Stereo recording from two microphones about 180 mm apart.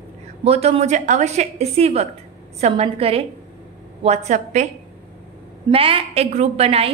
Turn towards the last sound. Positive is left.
turn(degrees=-35)  # may be behind; listen again after turning